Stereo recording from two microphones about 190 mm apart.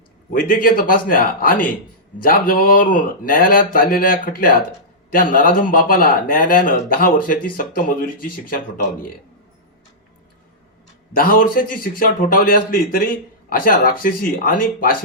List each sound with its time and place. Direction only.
0.3 s speech: 45° left (ahead or behind)
11.1 s speech: 50° left (ahead or behind)